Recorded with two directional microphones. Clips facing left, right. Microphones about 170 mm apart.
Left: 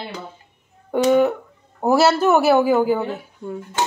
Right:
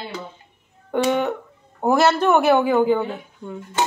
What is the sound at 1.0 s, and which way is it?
Speech, 5° left (ahead or behind).